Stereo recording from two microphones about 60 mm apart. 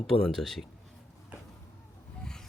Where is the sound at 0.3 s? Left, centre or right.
Centre.